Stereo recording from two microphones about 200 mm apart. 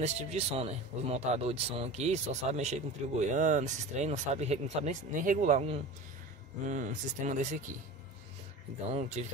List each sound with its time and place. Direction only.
0.0 s speech: 30° right (ahead or behind)
9.2 s speech: 35° right (ahead or behind)